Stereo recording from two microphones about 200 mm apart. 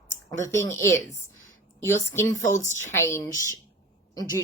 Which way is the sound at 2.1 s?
15° left (ahead or behind).